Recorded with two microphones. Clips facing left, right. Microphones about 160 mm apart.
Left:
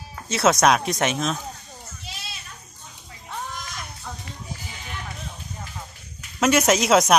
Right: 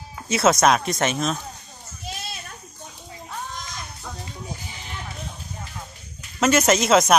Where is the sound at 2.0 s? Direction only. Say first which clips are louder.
Right 7 dB; 50° right (ahead or behind).